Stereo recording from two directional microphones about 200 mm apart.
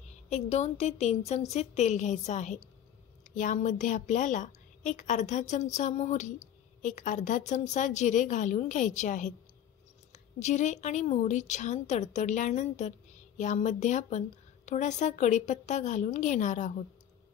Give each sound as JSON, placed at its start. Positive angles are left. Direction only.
{"t": 0.1, "sound": "a woman's voice", "side_deg": 35}